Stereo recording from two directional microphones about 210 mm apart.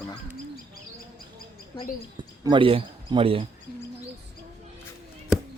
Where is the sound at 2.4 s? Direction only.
25° right (ahead or behind).